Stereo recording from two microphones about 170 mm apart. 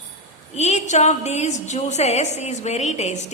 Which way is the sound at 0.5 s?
40° left (ahead or behind).